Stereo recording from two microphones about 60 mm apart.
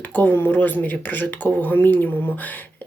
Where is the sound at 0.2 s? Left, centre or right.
Left.